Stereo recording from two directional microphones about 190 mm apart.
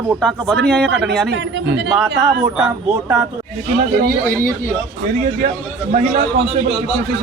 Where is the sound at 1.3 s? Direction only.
70° right (ahead or behind).